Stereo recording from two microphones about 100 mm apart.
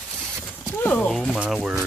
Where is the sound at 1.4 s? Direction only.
10° right (ahead or behind).